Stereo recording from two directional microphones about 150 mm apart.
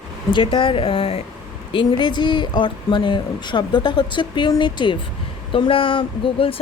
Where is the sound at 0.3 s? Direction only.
35° left (ahead or behind).